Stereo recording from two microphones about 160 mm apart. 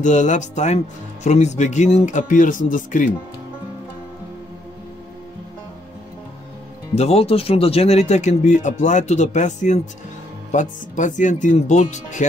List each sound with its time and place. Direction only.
0.0 s speech: 50° left (ahead or behind)
7.0 s speech: 40° left (ahead or behind)